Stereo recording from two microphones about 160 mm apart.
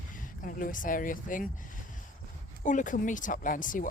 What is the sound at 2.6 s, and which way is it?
Speech, 55° left (ahead or behind).